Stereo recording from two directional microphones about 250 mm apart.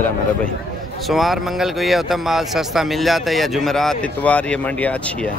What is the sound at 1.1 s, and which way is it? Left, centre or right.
Speech, centre.